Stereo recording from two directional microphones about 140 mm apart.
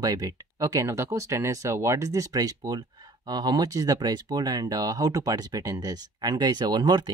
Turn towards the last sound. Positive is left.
turn(degrees=-30)  # may be behind; listen again after turning